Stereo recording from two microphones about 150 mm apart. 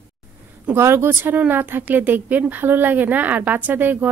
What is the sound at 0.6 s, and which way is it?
Speech, 15° right (ahead or behind).